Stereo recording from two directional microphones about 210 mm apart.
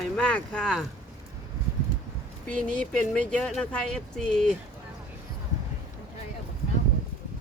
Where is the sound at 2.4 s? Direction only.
5° left (ahead or behind).